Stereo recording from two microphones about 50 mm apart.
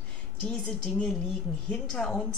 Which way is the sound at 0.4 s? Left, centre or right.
Left.